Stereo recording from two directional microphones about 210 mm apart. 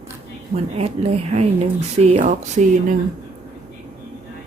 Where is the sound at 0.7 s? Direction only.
30° right (ahead or behind).